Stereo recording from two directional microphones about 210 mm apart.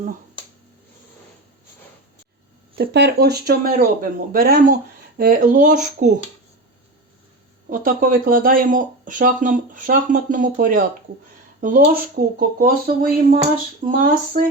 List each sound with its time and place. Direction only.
2.7 s speech: 50° right (ahead or behind)
7.7 s speech: 40° right (ahead or behind)